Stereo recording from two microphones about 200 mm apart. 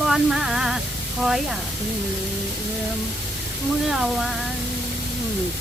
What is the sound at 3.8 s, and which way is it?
Speech, centre (ahead or behind).